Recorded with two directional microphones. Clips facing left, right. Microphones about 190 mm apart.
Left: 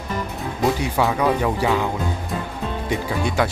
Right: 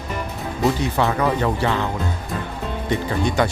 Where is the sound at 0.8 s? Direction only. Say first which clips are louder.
Even; 10° left (ahead or behind).